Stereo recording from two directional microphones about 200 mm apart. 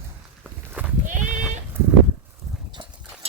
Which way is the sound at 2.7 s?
25° right (ahead or behind).